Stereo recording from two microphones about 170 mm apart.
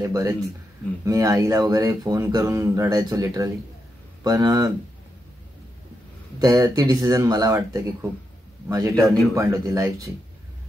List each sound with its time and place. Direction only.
0.0 s speech: 15° right (ahead or behind)
6.4 s speech: 20° right (ahead or behind)